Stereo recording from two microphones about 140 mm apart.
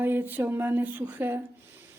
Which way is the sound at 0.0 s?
15° right (ahead or behind).